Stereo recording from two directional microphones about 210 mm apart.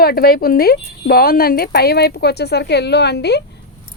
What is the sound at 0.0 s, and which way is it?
Speech, 45° left (ahead or behind).